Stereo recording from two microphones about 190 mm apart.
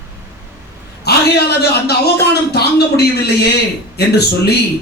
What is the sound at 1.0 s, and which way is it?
A man's voice, 55° left (ahead or behind).